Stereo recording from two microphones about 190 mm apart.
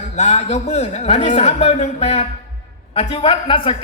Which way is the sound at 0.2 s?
35° left (ahead or behind).